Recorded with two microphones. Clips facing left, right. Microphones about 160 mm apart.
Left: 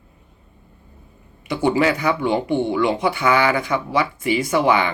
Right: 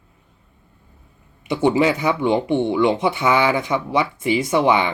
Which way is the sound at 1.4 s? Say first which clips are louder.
Right 1 dB; 25° right (ahead or behind).